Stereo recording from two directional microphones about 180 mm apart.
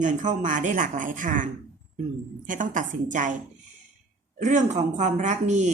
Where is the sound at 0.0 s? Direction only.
45° right (ahead or behind).